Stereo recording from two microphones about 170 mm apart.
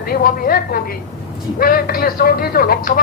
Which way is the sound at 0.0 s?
60° left (ahead or behind).